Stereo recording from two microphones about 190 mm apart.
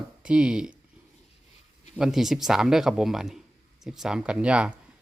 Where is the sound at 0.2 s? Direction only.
5° right (ahead or behind).